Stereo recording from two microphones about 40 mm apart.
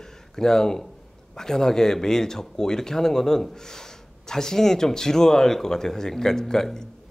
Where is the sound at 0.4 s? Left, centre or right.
Centre.